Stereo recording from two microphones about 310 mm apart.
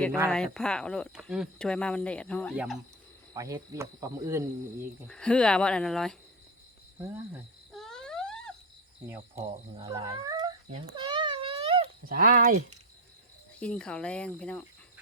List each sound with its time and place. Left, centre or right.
0.0 s speech: centre
3.3 s speech: centre
5.0 s speech: centre
7.7 s a sound: centre
9.0 s speech: centre
9.5 s a sound: centre
12.1 s speech: right
13.6 s speech: centre